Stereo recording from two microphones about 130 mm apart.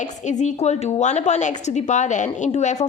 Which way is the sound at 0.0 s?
65° left (ahead or behind).